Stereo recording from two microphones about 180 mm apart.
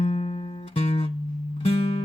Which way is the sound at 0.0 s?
30° left (ahead or behind).